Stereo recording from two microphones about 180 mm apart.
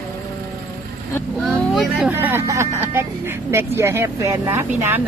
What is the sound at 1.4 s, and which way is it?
Speech, centre (ahead or behind).